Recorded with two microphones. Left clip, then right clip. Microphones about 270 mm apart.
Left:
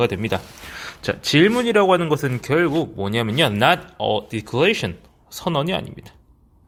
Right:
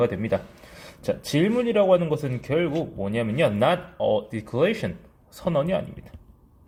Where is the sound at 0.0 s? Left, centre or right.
Left.